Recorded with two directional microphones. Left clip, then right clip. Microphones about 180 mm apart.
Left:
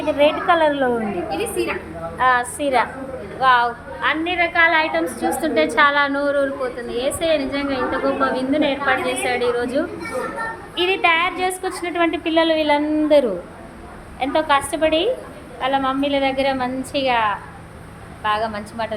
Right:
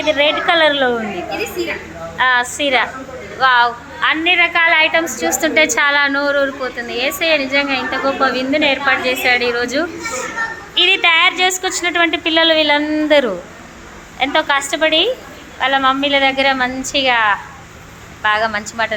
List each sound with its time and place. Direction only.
0.0 s a woman's voice: centre (ahead or behind)
1.3 s a woman's voice: 45° left (ahead or behind)
2.1 s a woman's voice: 5° left (ahead or behind)
4.0 s a woman's voice: 10° right (ahead or behind)
10.8 s a woman's voice: centre (ahead or behind)